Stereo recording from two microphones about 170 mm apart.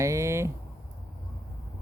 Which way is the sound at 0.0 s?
15° right (ahead or behind).